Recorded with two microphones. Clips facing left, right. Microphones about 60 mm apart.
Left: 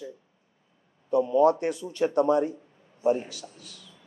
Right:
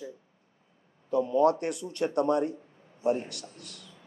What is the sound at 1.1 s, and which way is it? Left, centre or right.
Speech, left.